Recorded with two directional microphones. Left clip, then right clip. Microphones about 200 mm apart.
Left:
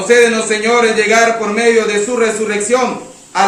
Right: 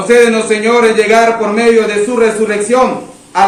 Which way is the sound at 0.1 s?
Centre (ahead or behind).